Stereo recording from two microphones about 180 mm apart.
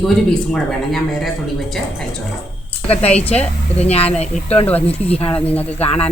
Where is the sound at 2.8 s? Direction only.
35° left (ahead or behind).